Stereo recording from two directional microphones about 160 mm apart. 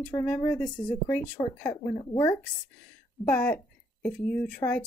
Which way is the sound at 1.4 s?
20° left (ahead or behind).